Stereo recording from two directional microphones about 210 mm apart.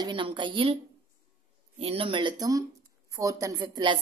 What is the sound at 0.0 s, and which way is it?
Speech, 25° right (ahead or behind).